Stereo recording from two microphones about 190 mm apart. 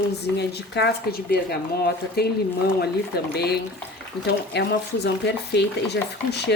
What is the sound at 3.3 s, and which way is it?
Speech, 55° left (ahead or behind).